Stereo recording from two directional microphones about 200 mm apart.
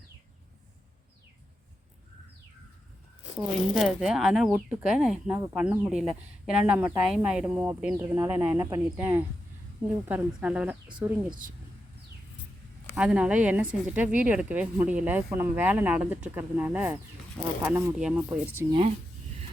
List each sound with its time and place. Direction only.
3.8 s speech: centre (ahead or behind)
10.8 s speech: 25° right (ahead or behind)
13.0 s speech: 5° right (ahead or behind)
18.7 s speech: 25° right (ahead or behind)